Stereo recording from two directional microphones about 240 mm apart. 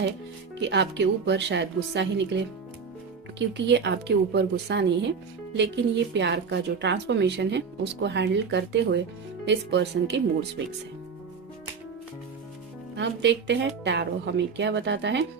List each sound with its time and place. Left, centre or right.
0.6 s a woman's voice: right
13.0 s a woman's voice: right